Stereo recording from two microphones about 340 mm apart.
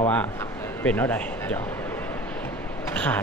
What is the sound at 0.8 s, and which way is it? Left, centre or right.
Speech, centre.